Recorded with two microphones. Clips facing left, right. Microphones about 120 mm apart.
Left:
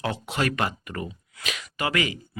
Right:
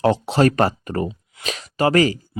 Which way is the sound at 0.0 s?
35° right (ahead or behind).